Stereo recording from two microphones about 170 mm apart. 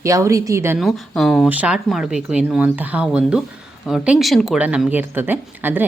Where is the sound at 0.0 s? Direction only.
20° right (ahead or behind).